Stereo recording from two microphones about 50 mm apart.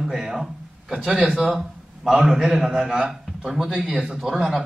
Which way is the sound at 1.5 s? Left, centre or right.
Centre.